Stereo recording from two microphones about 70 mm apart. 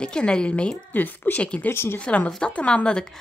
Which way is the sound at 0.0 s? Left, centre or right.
Centre.